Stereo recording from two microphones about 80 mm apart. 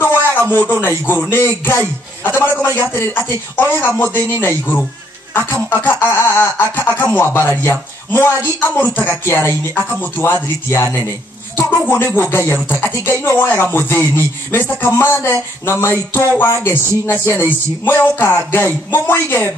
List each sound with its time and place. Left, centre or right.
0.6 s a man's voice: left